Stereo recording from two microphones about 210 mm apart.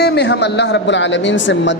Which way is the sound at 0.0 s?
55° left (ahead or behind).